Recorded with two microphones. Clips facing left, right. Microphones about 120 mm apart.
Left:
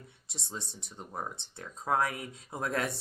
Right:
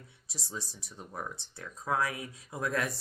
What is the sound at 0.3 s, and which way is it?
Speech, 25° left (ahead or behind).